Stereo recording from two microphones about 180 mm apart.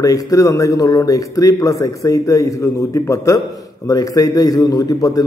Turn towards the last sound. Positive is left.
turn(degrees=20)  # may be behind; listen again after turning